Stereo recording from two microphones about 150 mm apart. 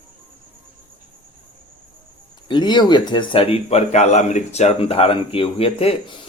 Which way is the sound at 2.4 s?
30° left (ahead or behind).